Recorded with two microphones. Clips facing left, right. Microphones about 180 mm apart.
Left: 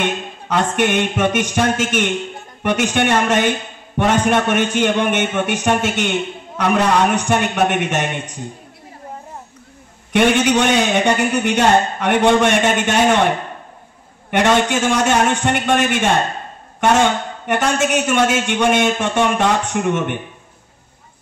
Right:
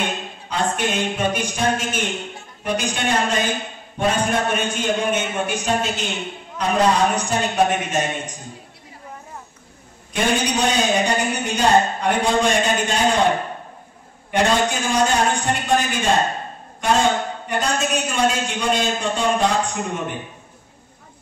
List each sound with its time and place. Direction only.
0.5 s a man's voice: 70° left (ahead or behind)
10.1 s a man's voice: 75° left (ahead or behind)
14.3 s a man's voice: 75° left (ahead or behind)